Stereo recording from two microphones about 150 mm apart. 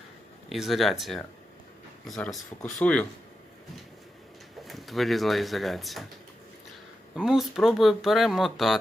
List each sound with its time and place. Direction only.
0.5 s speech: centre (ahead or behind)
4.6 s speech: centre (ahead or behind)
7.2 s speech: centre (ahead or behind)